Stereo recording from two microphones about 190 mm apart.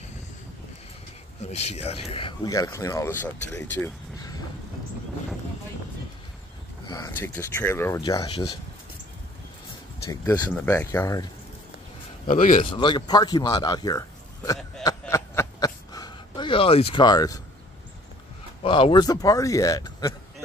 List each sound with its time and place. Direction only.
1.4 s speech: 35° left (ahead or behind); by 4.4 s 15° left (ahead or behind)
6.9 s speech: 15° left (ahead or behind)
10.2 s speech: 20° left (ahead or behind)
10.5 s speech: 10° left (ahead or behind)
12.3 s a man's voice: 45° left (ahead or behind)
12.6 s a sound: 25° left (ahead or behind)
18.6 s speech: 25° left (ahead or behind)